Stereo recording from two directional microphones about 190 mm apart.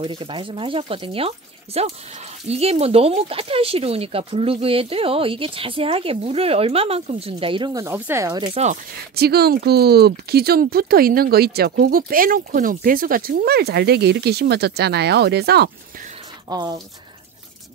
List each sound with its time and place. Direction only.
0.0 s speech: 25° right (ahead or behind)
9.1 s speech: 55° right (ahead or behind)
16.4 s speech: 20° right (ahead or behind)